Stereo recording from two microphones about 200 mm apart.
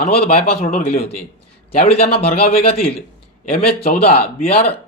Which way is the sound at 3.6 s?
50° left (ahead or behind).